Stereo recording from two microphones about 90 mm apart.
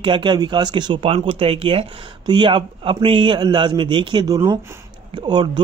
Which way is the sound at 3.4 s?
55° right (ahead or behind).